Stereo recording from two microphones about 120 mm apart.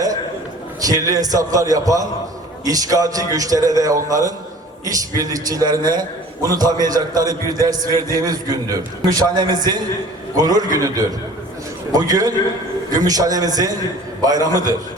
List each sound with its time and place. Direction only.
0.8 s a man's voice: 30° right (ahead or behind)